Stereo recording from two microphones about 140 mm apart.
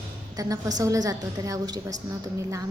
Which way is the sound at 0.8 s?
25° right (ahead or behind).